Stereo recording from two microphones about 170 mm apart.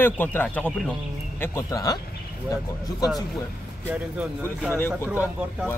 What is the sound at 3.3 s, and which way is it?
Speech, centre (ahead or behind).